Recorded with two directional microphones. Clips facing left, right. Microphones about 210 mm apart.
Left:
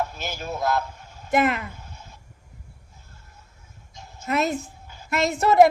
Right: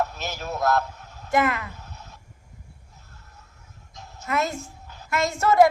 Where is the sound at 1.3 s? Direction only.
20° left (ahead or behind).